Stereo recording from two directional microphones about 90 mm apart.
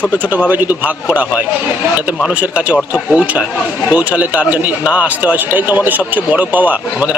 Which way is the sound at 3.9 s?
15° right (ahead or behind).